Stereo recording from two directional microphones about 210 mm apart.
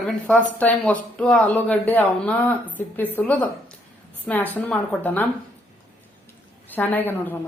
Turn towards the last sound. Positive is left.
turn(degrees=10)  # may be behind; listen again after turning